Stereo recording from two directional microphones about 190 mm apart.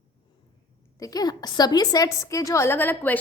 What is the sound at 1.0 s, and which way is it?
A woman's voice, 20° left (ahead or behind).